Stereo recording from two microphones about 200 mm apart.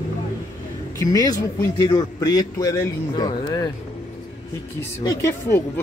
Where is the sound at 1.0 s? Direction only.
15° left (ahead or behind).